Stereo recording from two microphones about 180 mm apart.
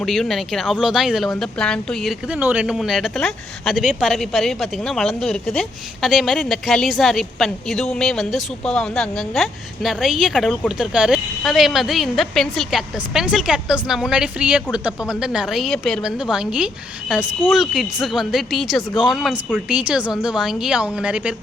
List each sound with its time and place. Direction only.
0.0 s speech: centre (ahead or behind)